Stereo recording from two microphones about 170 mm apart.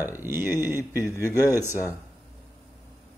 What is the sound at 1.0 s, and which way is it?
Speech, 15° left (ahead or behind).